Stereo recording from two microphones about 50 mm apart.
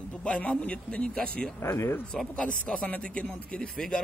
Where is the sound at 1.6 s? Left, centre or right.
Left.